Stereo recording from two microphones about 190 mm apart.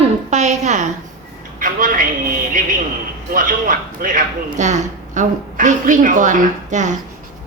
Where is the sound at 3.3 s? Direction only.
45° right (ahead or behind).